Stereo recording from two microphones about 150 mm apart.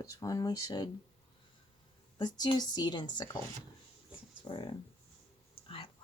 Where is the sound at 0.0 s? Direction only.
25° left (ahead or behind).